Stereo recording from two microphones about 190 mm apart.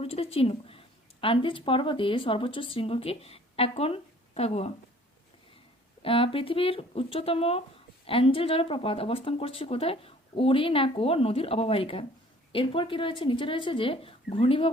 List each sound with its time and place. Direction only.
0.0 s speech: 30° left (ahead or behind)
6.0 s speech: 30° left (ahead or behind)